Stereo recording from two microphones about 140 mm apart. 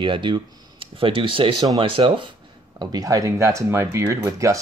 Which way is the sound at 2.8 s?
25° right (ahead or behind).